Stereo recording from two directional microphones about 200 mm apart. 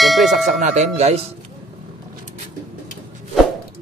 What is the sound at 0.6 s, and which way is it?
Speech, 35° right (ahead or behind).